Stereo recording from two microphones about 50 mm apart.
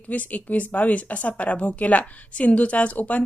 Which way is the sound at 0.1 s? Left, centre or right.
Left.